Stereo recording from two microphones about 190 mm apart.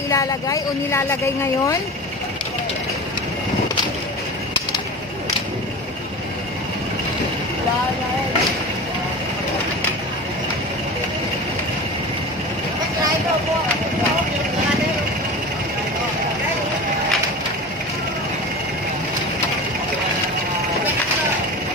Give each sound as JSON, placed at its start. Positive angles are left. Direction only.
{"t": 0.1, "sound": "speech", "side_deg": 15}